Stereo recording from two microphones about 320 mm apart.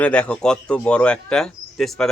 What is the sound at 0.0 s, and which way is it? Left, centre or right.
Speech, centre.